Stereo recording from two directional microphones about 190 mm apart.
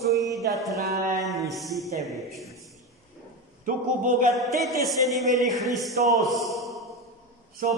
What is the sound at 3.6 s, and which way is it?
Speech, 45° right (ahead or behind).